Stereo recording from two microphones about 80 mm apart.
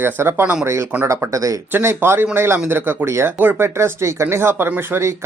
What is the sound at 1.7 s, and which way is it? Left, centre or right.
Speech, right.